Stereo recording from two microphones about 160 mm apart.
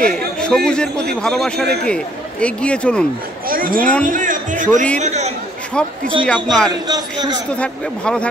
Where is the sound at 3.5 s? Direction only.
60° right (ahead or behind); by 5.3 s 45° right (ahead or behind).